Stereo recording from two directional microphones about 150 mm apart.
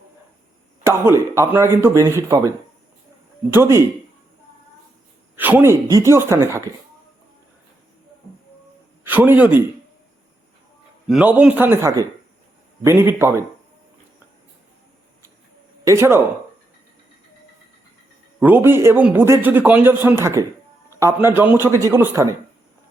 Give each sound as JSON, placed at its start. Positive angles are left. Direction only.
{"t": 0.9, "sound": "a man's voice", "side_deg": -20}
{"t": 5.4, "sound": "a man's voice", "side_deg": -10}
{"t": 9.0, "sound": "a man's voice", "side_deg": -10}
{"t": 11.1, "sound": "a man's voice", "side_deg": -10}
{"t": 15.8, "sound": "speech", "side_deg": -20}
{"t": 18.3, "sound": "a man's voice", "side_deg": -10}